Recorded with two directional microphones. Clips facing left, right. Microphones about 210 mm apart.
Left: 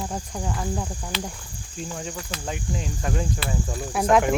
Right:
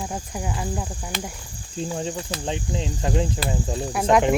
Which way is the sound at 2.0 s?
30° right (ahead or behind).